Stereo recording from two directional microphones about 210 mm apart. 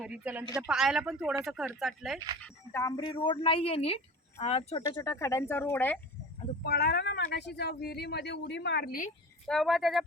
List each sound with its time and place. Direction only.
0.0 s speech: 5° right (ahead or behind)
2.4 s speech: 15° left (ahead or behind)
6.7 s speech: 50° left (ahead or behind)
9.5 s speech: centre (ahead or behind)